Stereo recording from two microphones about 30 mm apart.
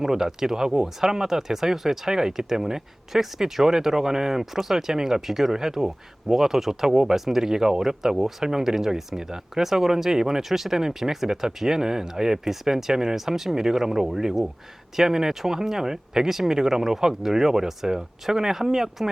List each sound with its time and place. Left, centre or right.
0.0 s speech: centre